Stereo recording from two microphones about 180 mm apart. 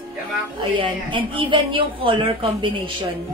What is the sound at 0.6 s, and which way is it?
Speech, 25° right (ahead or behind).